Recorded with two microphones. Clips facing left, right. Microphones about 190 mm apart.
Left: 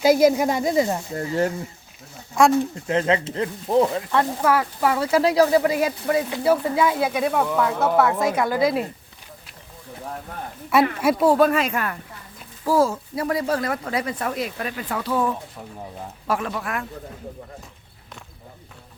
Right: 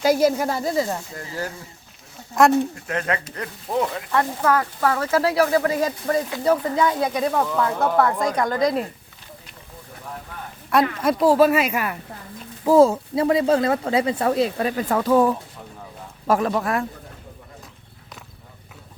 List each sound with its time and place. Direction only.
0.0 s speech: 10° left (ahead or behind)
1.1 s speech: 30° left (ahead or behind)
2.7 s speech: 25° left (ahead or behind)
4.1 s a woman's voice: 15° left (ahead or behind)
10.7 s a woman's voice: 5° left (ahead or behind)
12.6 s speech: 25° right (ahead or behind)
14.8 s speech: 45° right (ahead or behind)